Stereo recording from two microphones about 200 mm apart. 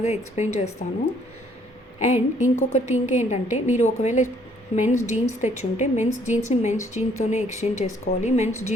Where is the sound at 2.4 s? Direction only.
35° left (ahead or behind).